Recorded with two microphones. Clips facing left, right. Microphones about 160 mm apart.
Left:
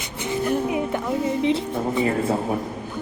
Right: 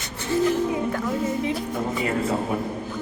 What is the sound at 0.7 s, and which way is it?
Speech, 20° left (ahead or behind).